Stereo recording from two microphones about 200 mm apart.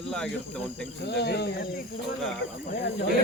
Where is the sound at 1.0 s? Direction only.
55° left (ahead or behind).